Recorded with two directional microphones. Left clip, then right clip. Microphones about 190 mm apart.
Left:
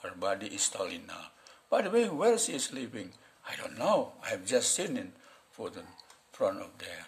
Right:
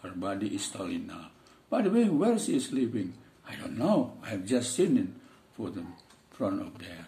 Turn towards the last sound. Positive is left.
turn(degrees=40)  # may be behind; listen again after turning